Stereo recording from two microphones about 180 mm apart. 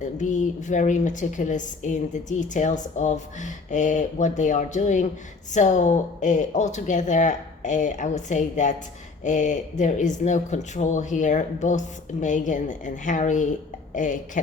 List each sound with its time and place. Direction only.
0.0 s a woman's voice: 45° left (ahead or behind)